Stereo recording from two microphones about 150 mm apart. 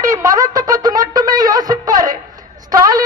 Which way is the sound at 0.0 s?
20° right (ahead or behind).